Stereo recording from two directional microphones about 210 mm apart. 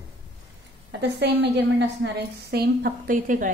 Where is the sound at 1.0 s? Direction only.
50° right (ahead or behind).